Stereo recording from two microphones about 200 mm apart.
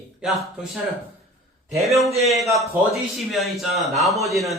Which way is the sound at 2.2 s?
Centre (ahead or behind).